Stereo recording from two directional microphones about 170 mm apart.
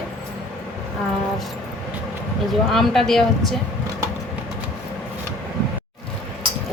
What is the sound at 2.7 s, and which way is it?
Speech, centre (ahead or behind).